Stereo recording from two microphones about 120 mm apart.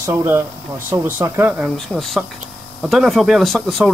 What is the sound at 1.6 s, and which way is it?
Speech, centre (ahead or behind).